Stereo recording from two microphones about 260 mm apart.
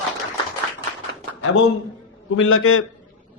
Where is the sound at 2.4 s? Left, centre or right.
Left.